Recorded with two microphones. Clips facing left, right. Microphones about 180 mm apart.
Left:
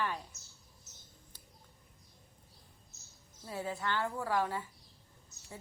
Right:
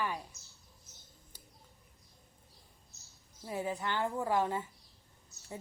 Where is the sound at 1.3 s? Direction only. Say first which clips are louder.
Right 2 dB; 10° right (ahead or behind).